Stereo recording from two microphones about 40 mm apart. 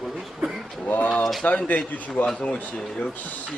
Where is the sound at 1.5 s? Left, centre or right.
Left.